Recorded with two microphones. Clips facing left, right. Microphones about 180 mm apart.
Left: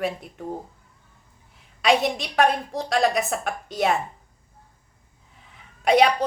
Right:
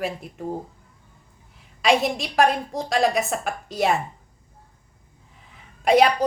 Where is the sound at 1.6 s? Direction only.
Centre (ahead or behind).